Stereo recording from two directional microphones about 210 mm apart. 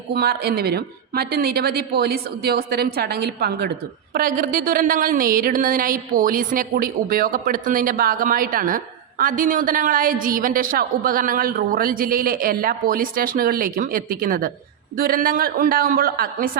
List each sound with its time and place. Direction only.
0.1 s a woman's voice: 50° right (ahead or behind)